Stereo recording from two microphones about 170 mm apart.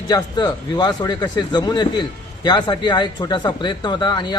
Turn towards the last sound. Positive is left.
turn(degrees=25)  # may be behind; listen again after turning